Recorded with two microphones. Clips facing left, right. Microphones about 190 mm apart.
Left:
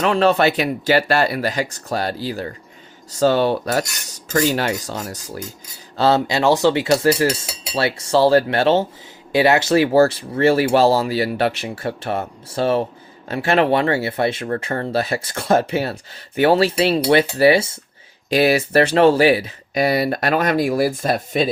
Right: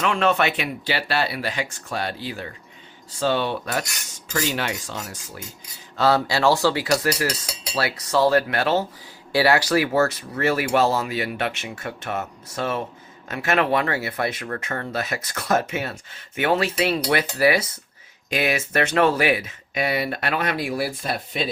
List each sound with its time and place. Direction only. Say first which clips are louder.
0.0 s speech: left 5 dB; 35° left (ahead or behind)
6.0 s cutlery: left 3 dB; 25° left (ahead or behind)
9.3 s speech: left 4 dB; 20° left (ahead or behind)
17.1 s cutlery: left 7 dB; 30° left (ahead or behind)
18.3 s speech: left 8 dB; 35° left (ahead or behind)